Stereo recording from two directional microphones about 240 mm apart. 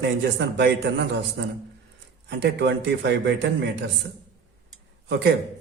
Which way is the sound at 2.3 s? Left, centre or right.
Right.